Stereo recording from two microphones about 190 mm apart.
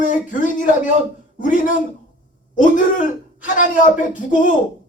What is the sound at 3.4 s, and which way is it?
Speech, 40° left (ahead or behind).